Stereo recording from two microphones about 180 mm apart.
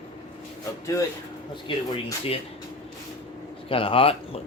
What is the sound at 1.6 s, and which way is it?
Speech, 30° left (ahead or behind).